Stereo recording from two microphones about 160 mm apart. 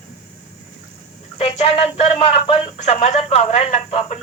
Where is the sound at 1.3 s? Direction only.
40° left (ahead or behind).